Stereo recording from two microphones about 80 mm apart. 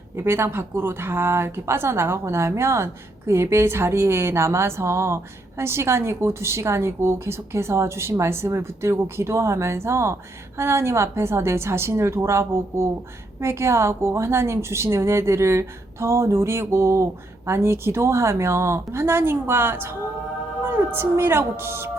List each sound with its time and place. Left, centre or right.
0.2 s speech: right